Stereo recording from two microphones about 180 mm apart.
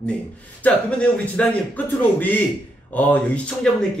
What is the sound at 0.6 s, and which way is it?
Speech, 10° left (ahead or behind).